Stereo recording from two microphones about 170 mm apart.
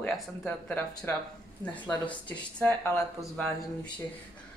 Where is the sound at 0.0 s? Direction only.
5° left (ahead or behind).